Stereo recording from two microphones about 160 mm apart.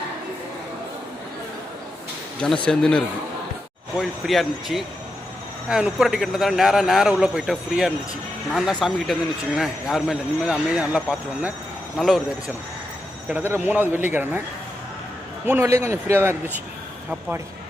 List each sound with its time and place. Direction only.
2.6 s a man's voice: 5° left (ahead or behind)
13.2 s a man's voice: 10° right (ahead or behind)
15.4 s a man's voice: 15° right (ahead or behind)